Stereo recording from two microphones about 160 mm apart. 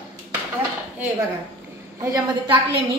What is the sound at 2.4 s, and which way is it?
Speech, 35° right (ahead or behind).